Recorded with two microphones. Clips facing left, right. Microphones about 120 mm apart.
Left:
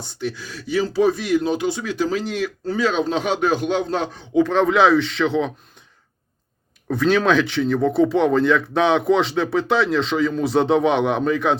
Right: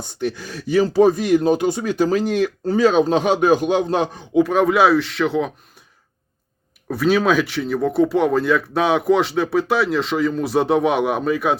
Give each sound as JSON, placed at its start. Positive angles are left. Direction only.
{"t": 0.2, "sound": "speech", "side_deg": -50}
{"t": 3.8, "sound": "a man's voice", "side_deg": -15}
{"t": 6.8, "sound": "speech", "side_deg": -5}